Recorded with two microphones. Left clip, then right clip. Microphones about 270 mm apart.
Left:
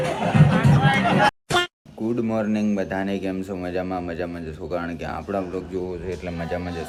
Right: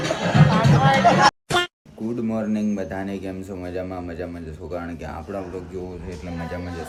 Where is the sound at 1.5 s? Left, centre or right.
Centre.